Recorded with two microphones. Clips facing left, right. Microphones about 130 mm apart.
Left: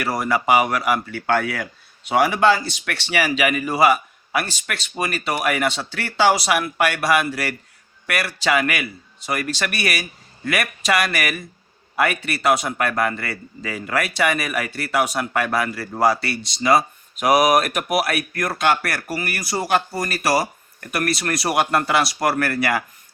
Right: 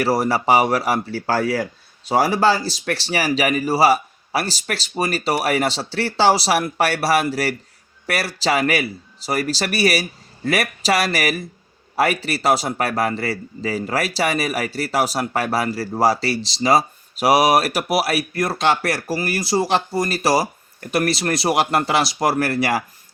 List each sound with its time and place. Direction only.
0.0 s a man's voice: 35° right (ahead or behind)